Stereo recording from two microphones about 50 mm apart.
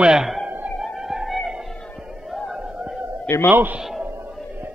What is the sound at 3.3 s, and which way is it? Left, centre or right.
Speech, left.